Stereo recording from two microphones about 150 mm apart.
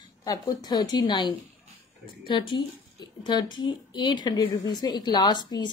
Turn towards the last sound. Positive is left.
turn(degrees=30)  # may be behind; listen again after turning